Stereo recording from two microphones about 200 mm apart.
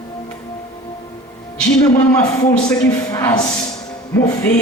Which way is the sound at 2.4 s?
20° left (ahead or behind).